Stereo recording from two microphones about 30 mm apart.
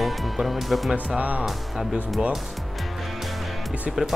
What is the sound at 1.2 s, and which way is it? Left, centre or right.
Speech, right.